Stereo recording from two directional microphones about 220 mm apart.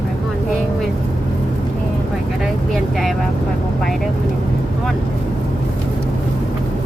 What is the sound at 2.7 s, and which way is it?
Speech, centre (ahead or behind).